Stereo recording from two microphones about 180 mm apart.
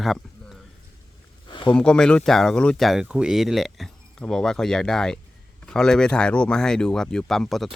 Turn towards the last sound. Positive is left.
turn(degrees=0)  # may be behind; listen again after turning